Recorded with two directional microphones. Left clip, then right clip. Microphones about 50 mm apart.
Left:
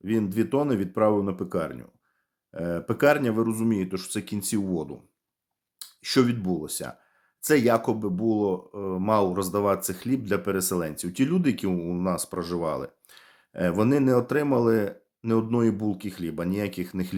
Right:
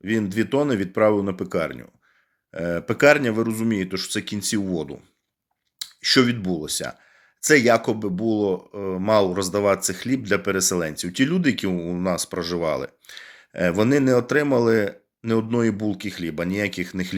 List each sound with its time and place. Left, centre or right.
0.0 s speech: left
15.2 s speech: left